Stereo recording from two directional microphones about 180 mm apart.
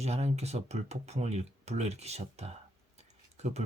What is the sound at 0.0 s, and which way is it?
Speech, 35° right (ahead or behind).